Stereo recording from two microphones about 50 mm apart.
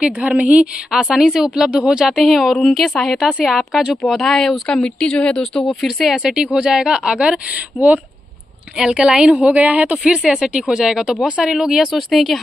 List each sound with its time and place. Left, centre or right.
0.4 s a woman's voice: right
1.0 s a woman's voice: centre
3.2 s speech: centre
3.4 s a woman's voice: centre
5.8 s a woman's voice: centre
6.2 s a woman's voice: centre